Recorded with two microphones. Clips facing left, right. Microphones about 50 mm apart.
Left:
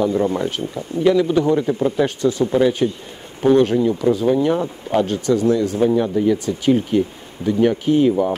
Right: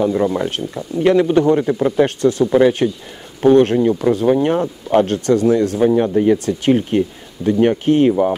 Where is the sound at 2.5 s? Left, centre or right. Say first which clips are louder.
Right 3 dB; right.